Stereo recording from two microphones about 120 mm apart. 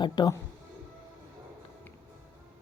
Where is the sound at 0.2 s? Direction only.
35° left (ahead or behind).